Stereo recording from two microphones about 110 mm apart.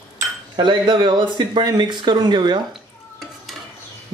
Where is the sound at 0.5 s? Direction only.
45° right (ahead or behind).